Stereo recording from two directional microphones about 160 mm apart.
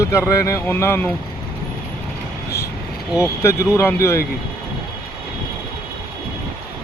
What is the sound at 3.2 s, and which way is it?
Speech, 15° left (ahead or behind).